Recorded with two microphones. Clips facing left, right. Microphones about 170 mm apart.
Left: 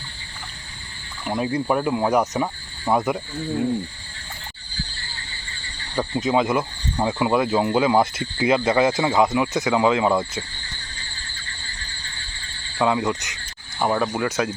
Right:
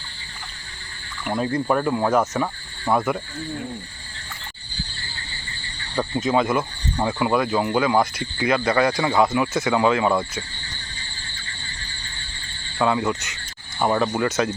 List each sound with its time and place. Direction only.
1.3 s cricket: 10° left (ahead or behind)
6.0 s speech: 15° left (ahead or behind)
9.7 s cricket: 15° left (ahead or behind)
12.8 s cricket: 15° left (ahead or behind)
13.7 s cricket: 5° left (ahead or behind)